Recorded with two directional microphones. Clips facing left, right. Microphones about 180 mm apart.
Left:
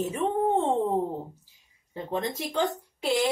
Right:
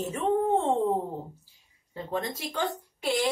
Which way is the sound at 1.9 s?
20° left (ahead or behind).